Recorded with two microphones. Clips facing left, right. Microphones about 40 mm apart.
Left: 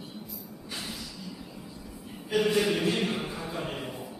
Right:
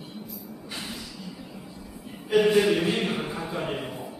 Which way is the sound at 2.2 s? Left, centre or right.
Centre.